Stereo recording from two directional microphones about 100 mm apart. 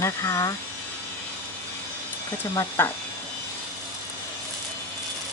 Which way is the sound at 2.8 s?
20° left (ahead or behind).